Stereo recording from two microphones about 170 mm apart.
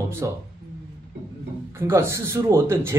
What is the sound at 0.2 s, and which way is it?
Speech, 20° right (ahead or behind).